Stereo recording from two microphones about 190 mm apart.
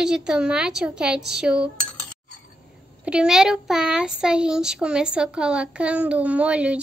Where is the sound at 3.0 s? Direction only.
5° right (ahead or behind).